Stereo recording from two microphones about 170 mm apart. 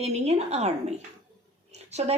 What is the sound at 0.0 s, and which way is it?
A woman's voice, 40° right (ahead or behind).